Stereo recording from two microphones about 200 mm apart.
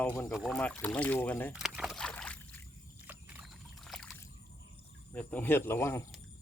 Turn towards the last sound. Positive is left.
turn(degrees=10)  # may be behind; listen again after turning